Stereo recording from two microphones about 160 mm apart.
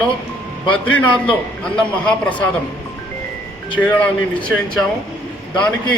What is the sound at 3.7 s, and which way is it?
Speech, 10° left (ahead or behind).